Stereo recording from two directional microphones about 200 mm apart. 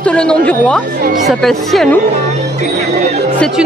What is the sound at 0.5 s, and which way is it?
Speech, 5° left (ahead or behind).